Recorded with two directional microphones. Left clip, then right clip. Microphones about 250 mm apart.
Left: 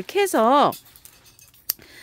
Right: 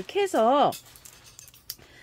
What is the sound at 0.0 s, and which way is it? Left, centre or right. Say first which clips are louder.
Speech: left 4 dB; left.